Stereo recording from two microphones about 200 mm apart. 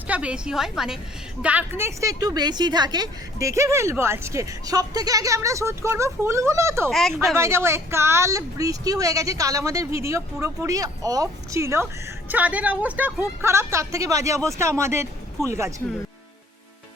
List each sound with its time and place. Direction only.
0.1 s a woman's voice: 5° right (ahead or behind)